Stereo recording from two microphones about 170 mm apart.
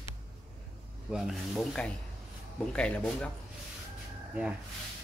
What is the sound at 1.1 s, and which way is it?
Speech, centre (ahead or behind).